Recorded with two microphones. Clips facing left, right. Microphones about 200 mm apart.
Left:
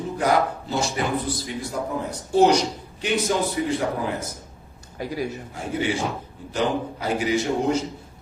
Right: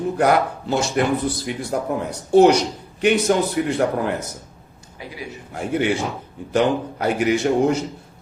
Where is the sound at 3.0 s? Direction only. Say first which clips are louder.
Right 6 dB; 60° right (ahead or behind).